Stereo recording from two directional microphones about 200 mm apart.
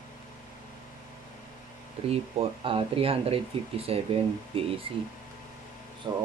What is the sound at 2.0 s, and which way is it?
Speech, 30° right (ahead or behind).